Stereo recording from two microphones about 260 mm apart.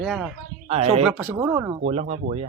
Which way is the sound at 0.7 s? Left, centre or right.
Right.